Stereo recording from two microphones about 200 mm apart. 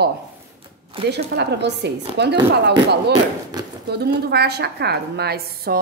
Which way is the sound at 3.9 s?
50° right (ahead or behind).